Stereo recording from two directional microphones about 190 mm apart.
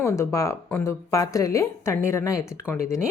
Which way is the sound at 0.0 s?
15° left (ahead or behind).